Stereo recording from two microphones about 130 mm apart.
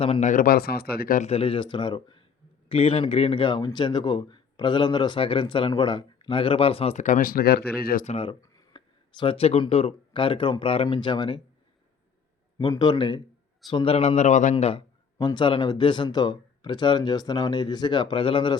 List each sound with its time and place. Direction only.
0.2 s speech: 85° left
1.3 s a man's voice: 45° left (ahead or behind)
2.6 s a man's voice: 50° left (ahead or behind)
7.0 s speech: 90° left
8.1 s a man's voice: 45° left (ahead or behind)
8.4 s speech: 30° left (ahead or behind)
12.5 s a man's voice: 35° left (ahead or behind); by 14.5 s 65° left (ahead or behind)
14.5 s a man's voice: 45° left (ahead or behind)
15.2 s a man's voice: 35° left (ahead or behind)